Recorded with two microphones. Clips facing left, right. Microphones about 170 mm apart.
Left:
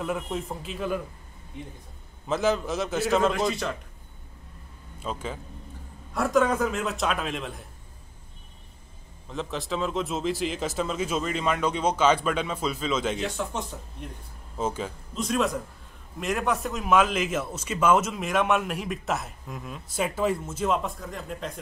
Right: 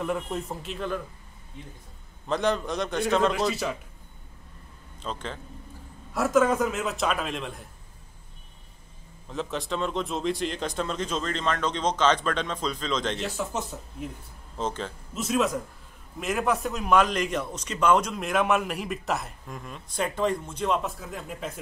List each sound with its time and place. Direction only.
0.0 s a man's voice: centre (ahead or behind)
1.5 s a man's voice: 15° left (ahead or behind)
2.2 s a man's voice: 5° left (ahead or behind)
5.0 s a man's voice: 10° left (ahead or behind)
6.1 s a man's voice: centre (ahead or behind)
9.3 s a man's voice: centre (ahead or behind)
14.6 s a man's voice: 10° left (ahead or behind)
15.1 s a man's voice: centre (ahead or behind)